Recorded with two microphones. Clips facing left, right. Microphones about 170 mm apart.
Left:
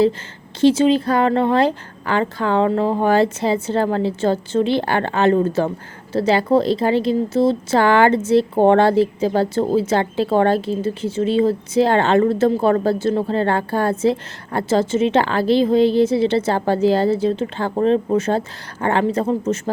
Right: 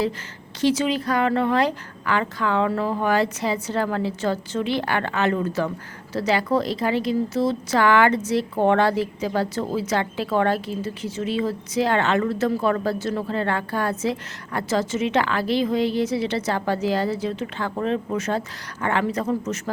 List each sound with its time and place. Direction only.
0.6 s a woman's voice: 25° left (ahead or behind)